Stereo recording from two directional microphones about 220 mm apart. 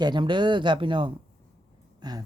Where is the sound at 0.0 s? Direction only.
20° right (ahead or behind).